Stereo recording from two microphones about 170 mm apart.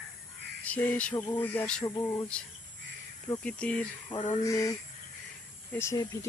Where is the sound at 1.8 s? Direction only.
20° left (ahead or behind).